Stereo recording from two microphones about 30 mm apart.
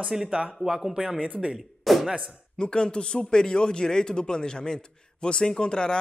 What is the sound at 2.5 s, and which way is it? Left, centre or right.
Speech, left.